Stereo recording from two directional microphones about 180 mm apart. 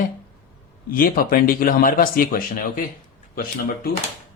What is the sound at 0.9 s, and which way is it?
Speech, 50° left (ahead or behind).